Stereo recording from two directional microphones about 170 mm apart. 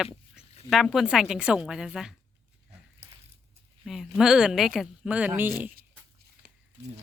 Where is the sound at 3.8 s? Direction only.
5° right (ahead or behind).